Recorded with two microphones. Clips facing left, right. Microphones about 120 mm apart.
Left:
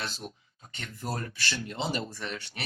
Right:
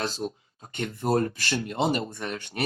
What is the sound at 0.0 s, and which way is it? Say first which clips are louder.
Speech: right 8 dB; 40° right (ahead or behind).